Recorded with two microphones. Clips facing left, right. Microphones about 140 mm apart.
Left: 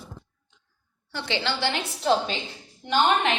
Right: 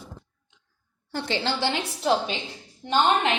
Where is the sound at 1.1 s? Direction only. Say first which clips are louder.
Right 1 dB; 40° right (ahead or behind).